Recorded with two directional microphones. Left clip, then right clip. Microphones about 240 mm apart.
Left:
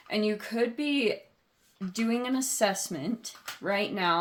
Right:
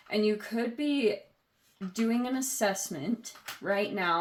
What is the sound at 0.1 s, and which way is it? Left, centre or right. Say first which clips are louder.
Speech: right 1 dB; left.